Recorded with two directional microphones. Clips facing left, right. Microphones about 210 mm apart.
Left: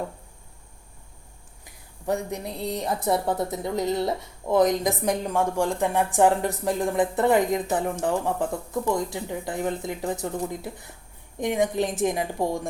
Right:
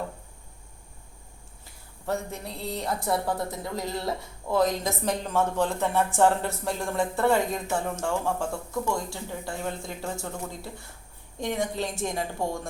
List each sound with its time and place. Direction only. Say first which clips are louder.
1.6 s a woman's voice: left 4 dB; 15° left (ahead or behind)